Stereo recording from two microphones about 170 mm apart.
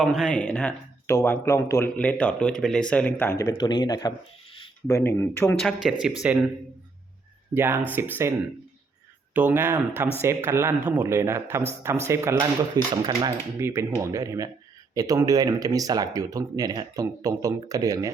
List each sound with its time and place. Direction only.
0.0 s speech: 5° left (ahead or behind)
5.5 s speech: centre (ahead or behind)
7.5 s a man's voice: 10° right (ahead or behind)
9.3 s a man's voice: 10° right (ahead or behind); by 13.3 s 30° right (ahead or behind)
13.6 s speech: 15° right (ahead or behind)